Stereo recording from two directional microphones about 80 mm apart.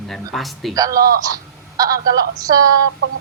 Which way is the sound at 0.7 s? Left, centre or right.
Right.